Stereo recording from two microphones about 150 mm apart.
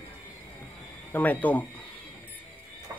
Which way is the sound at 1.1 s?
10° left (ahead or behind).